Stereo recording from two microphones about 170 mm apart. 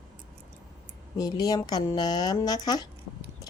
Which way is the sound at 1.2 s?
20° left (ahead or behind).